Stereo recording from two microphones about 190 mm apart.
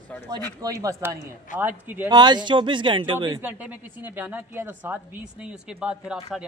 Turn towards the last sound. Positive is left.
turn(degrees=-5)  # may be behind; listen again after turning